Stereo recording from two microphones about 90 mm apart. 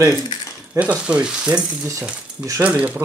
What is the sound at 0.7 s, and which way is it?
Speech, 15° right (ahead or behind).